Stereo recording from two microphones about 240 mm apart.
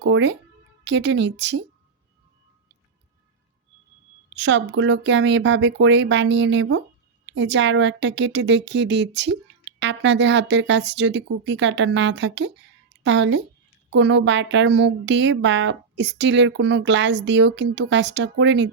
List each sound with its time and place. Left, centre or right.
0.0 s a woman's voice: right
4.4 s a woman's voice: right